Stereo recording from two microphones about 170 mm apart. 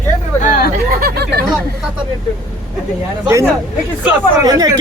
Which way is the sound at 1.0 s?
65° right (ahead or behind).